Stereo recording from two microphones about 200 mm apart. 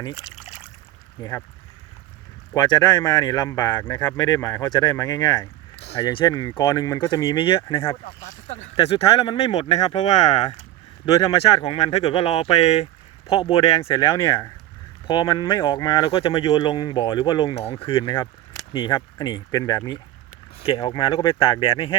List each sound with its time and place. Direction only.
1.2 s speech: 15° left (ahead or behind)
2.6 s speech: 20° left (ahead or behind)
11.0 s speech: 20° left (ahead or behind)